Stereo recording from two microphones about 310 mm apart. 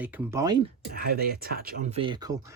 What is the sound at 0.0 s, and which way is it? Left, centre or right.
Speech, centre.